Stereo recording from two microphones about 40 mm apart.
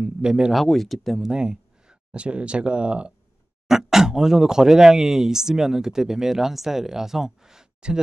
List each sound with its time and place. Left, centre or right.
0.0 s speech: right
0.7 s speech: centre
1.2 s speech: centre
3.6 s speech: centre